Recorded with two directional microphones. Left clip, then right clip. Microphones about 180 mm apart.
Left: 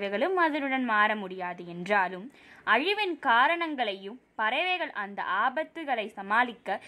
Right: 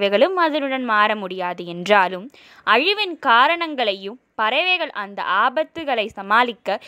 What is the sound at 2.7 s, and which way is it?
A woman's voice, 30° right (ahead or behind).